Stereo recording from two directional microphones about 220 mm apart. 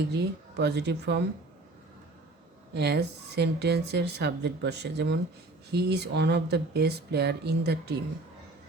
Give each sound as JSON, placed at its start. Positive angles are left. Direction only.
{"t": 0.1, "sound": "speech", "side_deg": -50}
{"t": 2.7, "sound": "speech", "side_deg": -50}